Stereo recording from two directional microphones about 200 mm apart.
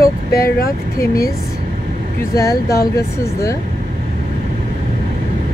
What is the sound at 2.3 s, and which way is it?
Speech, 15° left (ahead or behind).